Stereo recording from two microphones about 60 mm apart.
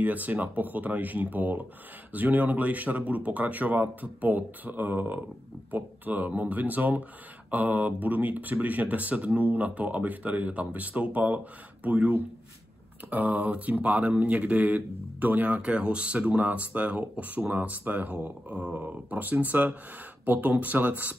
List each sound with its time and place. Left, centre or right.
0.0 s speech: right